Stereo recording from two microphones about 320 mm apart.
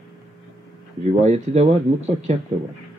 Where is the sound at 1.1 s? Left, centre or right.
Right.